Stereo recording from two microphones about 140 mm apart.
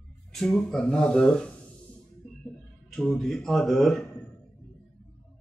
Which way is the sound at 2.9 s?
5° left (ahead or behind).